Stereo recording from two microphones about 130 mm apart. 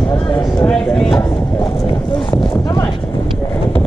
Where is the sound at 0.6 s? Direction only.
5° left (ahead or behind).